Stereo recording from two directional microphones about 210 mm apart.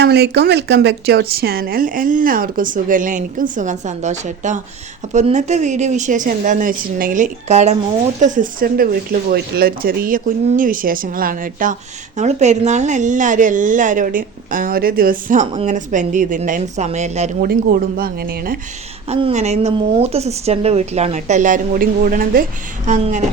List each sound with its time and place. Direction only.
0.0 s speech: 50° right (ahead or behind); by 17.5 s 35° right (ahead or behind)
17.5 s speech: 45° right (ahead or behind)
19.0 s speech: 30° right (ahead or behind)